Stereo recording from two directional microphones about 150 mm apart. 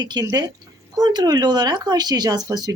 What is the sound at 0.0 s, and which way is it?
Speech, 25° right (ahead or behind).